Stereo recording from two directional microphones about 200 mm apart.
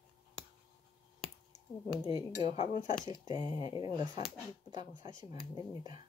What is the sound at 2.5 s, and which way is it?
Speech, 35° left (ahead or behind).